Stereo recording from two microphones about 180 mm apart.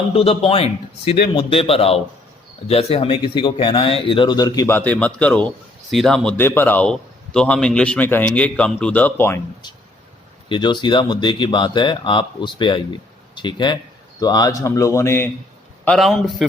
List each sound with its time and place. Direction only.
0.1 s speech: 30° left (ahead or behind)
4.6 s a man's voice: 10° left (ahead or behind)
10.5 s a man's voice: 25° left (ahead or behind)
15.8 s a man's voice: centre (ahead or behind)